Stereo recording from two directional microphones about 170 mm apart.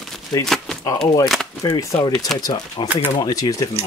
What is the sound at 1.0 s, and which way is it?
Speech, 25° left (ahead or behind).